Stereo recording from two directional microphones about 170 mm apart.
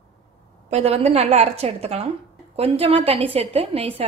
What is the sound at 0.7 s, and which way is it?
A woman's voice, 40° right (ahead or behind).